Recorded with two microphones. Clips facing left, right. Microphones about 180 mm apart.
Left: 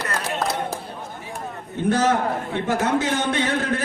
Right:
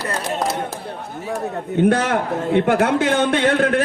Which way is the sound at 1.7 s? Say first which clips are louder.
Right 3 dB; 60° right (ahead or behind).